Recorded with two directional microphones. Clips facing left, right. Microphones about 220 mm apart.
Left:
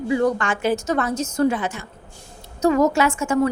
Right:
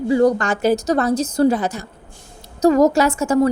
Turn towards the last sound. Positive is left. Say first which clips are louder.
# right 3 dB
turn(degrees=-40)  # may be behind; listen again after turning